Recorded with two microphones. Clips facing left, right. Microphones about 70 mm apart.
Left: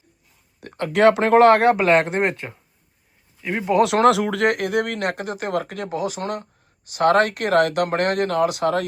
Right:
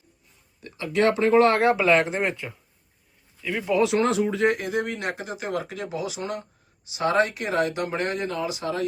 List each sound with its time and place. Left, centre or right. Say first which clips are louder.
0.6 s speech: left 6 dB; left
1.5 s speech: left 3 dB; centre
2.2 s speech: left 4 dB; left
3.8 s speech: left 6 dB; left